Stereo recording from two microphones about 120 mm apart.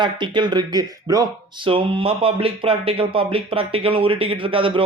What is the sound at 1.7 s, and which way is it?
Speech, 50° right (ahead or behind).